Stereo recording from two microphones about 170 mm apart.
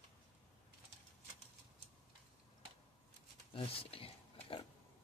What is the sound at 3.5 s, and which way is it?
Pig, 35° left (ahead or behind).